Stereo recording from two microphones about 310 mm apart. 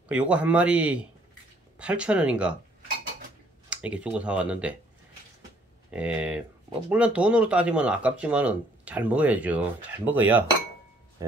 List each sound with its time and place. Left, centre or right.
0.1 s speech: centre
3.7 s speech: centre
5.9 s speech: centre
11.2 s music: centre